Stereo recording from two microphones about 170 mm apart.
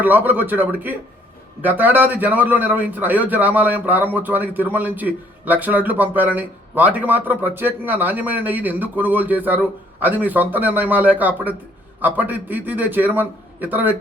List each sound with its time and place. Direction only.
0.0 s a man's voice: 10° right (ahead or behind)